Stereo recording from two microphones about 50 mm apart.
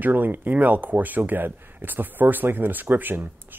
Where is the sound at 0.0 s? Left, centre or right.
Right.